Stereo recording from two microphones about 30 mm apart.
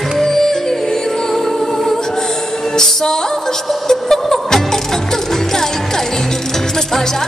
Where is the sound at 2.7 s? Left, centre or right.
Centre.